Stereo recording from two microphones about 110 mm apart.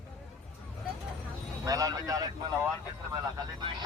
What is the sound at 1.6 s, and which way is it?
A man's voice, 35° right (ahead or behind).